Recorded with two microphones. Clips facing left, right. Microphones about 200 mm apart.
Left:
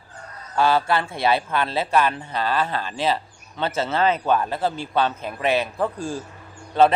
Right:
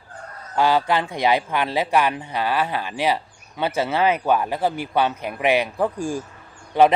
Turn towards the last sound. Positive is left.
turn(degrees=-15)  # may be behind; listen again after turning